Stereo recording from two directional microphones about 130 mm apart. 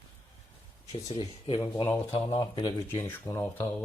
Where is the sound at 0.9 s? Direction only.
45° left (ahead or behind).